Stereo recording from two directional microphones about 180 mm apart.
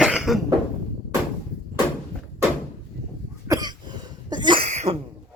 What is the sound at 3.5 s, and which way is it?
Cough, 20° right (ahead or behind).